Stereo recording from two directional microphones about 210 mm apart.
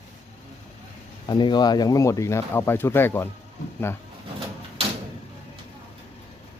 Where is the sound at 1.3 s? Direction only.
20° left (ahead or behind).